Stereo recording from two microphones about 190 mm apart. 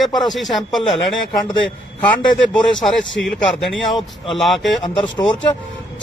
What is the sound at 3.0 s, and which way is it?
Speech, 80° left.